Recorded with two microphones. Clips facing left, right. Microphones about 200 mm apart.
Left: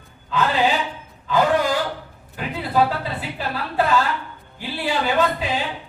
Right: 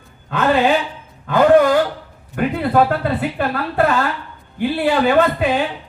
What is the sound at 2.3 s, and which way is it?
A woman's voice, 55° right (ahead or behind).